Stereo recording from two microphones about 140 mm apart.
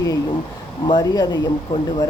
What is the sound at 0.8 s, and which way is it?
Speech, 30° left (ahead or behind).